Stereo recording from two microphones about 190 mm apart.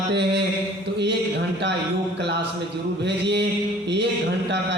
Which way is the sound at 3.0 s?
65° right (ahead or behind).